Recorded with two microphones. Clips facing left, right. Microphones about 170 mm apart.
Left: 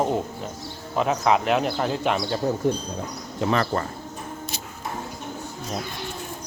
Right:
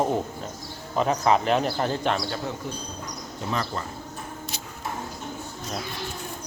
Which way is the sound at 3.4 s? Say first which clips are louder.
Left 6 dB; 70° left (ahead or behind).